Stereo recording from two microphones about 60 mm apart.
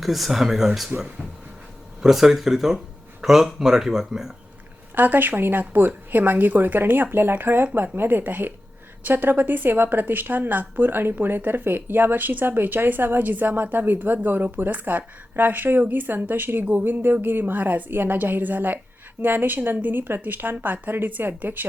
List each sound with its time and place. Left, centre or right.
0.0 s speech: centre
2.0 s speech: centre
4.9 s a woman's voice: right